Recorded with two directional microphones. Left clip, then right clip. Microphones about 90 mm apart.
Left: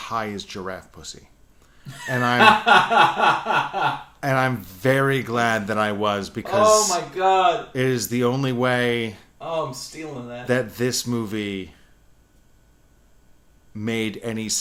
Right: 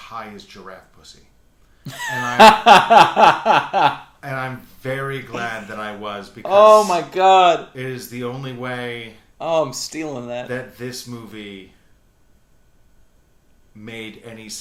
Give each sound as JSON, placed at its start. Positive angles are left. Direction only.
{"t": 0.0, "sound": "speech", "side_deg": 45}
{"t": 2.4, "sound": "snicker", "side_deg": -50}
{"t": 4.2, "sound": "speech", "side_deg": 45}
{"t": 6.7, "sound": "snicker", "side_deg": -50}
{"t": 7.7, "sound": "speech", "side_deg": 45}
{"t": 9.4, "sound": "snicker", "side_deg": -50}
{"t": 10.5, "sound": "speech", "side_deg": 50}
{"t": 13.7, "sound": "speech", "side_deg": 45}